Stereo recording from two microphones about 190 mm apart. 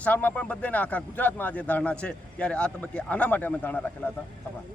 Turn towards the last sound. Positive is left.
turn(degrees=10)  # may be behind; listen again after turning